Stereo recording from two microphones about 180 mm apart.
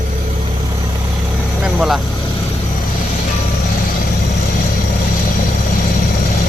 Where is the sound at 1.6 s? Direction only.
Centre (ahead or behind).